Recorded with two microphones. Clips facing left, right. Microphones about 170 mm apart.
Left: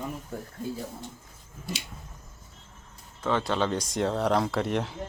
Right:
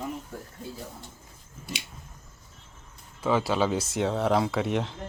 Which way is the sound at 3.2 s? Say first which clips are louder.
Right 2 dB; 5° right (ahead or behind).